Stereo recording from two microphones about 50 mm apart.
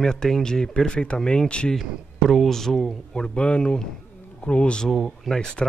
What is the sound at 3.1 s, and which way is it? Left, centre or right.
Speech, centre.